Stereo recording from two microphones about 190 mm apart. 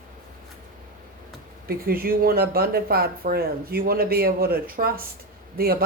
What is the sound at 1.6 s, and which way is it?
Speech, 50° right (ahead or behind).